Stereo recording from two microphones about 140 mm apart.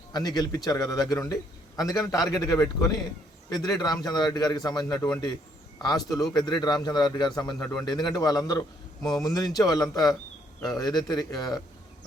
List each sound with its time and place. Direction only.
0.1 s a man's voice: 30° left (ahead or behind)